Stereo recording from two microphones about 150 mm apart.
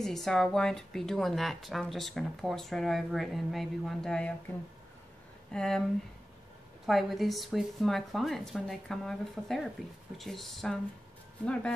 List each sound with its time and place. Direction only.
0.0 s speech: 5° left (ahead or behind)
5.5 s speech: 5° left (ahead or behind)
6.9 s speech: centre (ahead or behind)